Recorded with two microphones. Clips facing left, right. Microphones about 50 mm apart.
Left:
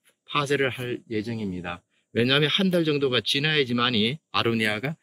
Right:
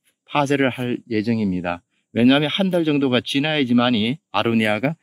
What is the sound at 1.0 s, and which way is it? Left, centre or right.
Speech, right.